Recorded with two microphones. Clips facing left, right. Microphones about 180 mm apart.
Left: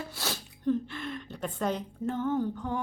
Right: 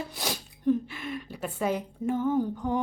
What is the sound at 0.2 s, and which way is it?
Speech, 10° right (ahead or behind).